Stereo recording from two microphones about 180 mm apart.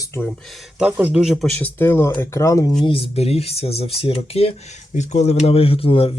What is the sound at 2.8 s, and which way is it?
Speech, 30° left (ahead or behind).